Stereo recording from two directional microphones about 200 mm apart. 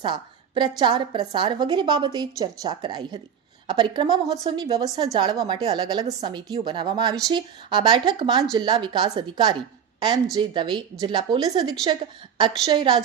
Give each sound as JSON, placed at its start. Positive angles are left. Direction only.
{"t": 0.0, "sound": "a woman's voice", "side_deg": -25}